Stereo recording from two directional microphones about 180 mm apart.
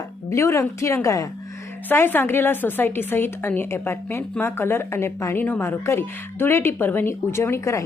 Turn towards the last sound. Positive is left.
turn(degrees=15)  # may be behind; listen again after turning